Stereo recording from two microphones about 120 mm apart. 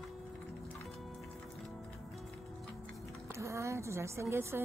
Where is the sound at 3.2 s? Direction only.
25° right (ahead or behind).